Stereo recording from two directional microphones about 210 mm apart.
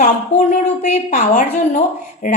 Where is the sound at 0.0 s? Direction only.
35° left (ahead or behind).